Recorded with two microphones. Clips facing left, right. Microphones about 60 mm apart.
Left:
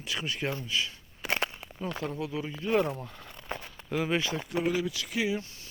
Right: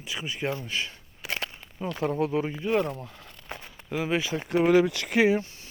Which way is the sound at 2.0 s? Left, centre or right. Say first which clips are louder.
Right 12 dB; right.